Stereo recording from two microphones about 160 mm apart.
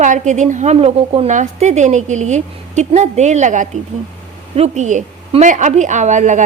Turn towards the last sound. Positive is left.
turn(degrees=-50)  # may be behind; listen again after turning